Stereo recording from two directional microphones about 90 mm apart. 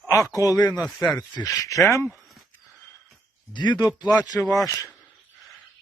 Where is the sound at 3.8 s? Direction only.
45° left (ahead or behind).